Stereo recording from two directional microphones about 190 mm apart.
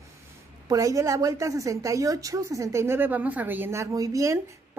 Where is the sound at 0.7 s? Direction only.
15° right (ahead or behind).